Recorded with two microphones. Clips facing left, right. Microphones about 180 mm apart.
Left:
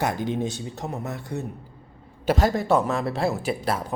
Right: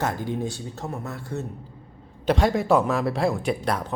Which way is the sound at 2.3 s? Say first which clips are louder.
Right 1 dB; centre (ahead or behind).